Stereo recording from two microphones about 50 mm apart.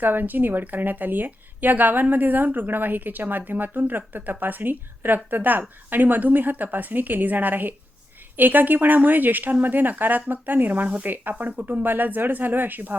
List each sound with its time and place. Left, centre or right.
0.0 s a woman's voice: right